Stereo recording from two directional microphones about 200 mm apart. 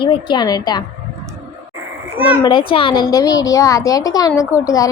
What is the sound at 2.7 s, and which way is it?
A woman's voice, 25° left (ahead or behind).